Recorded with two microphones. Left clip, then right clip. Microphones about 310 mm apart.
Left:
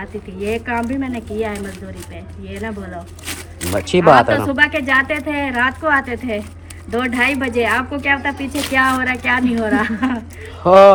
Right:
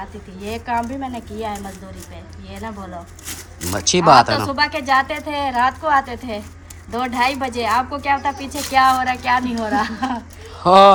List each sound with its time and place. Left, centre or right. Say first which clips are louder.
0.4 s a woman's voice: left 2 dB; centre
3.6 s a woman's voice: left 2 dB; centre